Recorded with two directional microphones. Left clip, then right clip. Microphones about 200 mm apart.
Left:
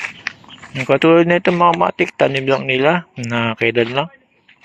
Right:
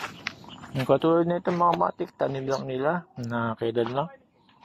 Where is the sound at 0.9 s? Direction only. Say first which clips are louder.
Left 10 dB; 45° left (ahead or behind).